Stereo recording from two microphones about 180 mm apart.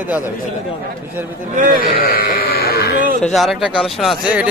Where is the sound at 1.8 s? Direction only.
55° left (ahead or behind).